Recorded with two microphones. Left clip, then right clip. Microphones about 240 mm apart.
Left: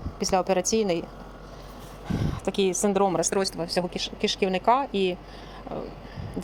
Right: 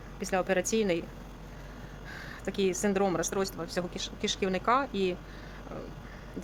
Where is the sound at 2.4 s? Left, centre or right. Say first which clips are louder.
Left 5 dB; centre.